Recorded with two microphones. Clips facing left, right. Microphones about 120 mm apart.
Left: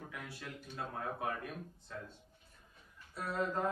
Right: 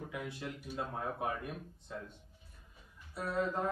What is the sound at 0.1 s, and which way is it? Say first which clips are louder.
Speech: right 5 dB; 15° right (ahead or behind).